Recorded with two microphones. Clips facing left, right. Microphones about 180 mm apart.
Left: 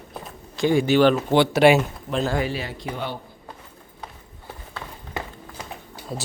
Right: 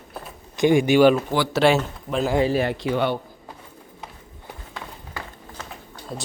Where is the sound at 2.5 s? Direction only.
60° right (ahead or behind); by 3.1 s 80° right.